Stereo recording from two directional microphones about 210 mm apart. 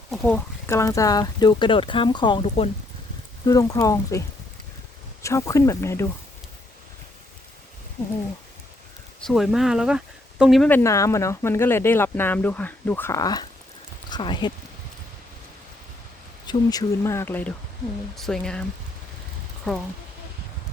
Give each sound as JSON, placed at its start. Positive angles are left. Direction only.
{"t": 0.1, "sound": "speech", "side_deg": 5}
{"t": 5.2, "sound": "speech", "side_deg": 15}
{"t": 9.2, "sound": "speech", "side_deg": 0}
{"t": 16.5, "sound": "speech", "side_deg": 20}